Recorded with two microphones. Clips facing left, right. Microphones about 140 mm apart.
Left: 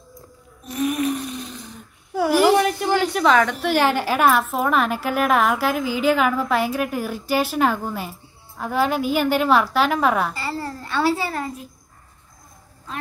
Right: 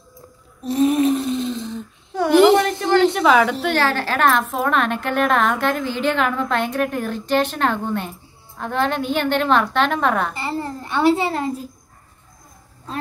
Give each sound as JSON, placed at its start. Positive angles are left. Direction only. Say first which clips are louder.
{"t": 0.7, "sound": "a sound", "louder": "right 6 dB", "side_deg": -30}
{"t": 3.1, "sound": "a woman's voice", "louder": "right 2 dB", "side_deg": 0}
{"t": 3.7, "sound": "a woman's voice", "louder": "left 1 dB", "side_deg": 15}
{"t": 10.3, "sound": "a child's voice", "louder": "right 3 dB", "side_deg": -20}